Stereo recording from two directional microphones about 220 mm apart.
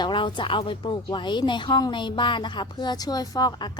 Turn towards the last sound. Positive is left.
turn(degrees=15)  # may be behind; listen again after turning